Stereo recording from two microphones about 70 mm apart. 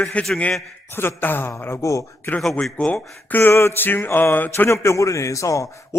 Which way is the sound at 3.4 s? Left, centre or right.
Left.